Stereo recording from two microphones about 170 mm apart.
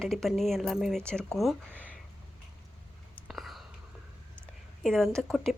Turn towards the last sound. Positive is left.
turn(degrees=0)  # may be behind; listen again after turning